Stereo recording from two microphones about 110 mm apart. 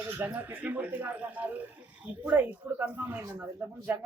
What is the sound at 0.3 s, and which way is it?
Speech, 15° right (ahead or behind).